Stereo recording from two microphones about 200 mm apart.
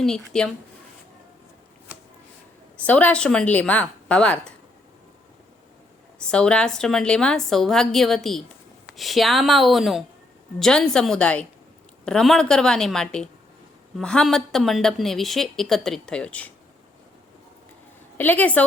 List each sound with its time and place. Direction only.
0.0 s a woman's voice: 5° left (ahead or behind)
2.8 s speech: 5° left (ahead or behind)
6.3 s a woman's voice: 5° left (ahead or behind)
18.2 s speech: 10° left (ahead or behind)